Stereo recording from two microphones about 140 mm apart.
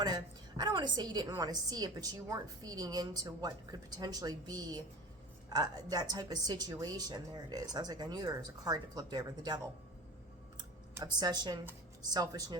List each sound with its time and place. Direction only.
0.0 s a woman's voice: 30° right (ahead or behind)
11.0 s a woman's voice: 30° right (ahead or behind)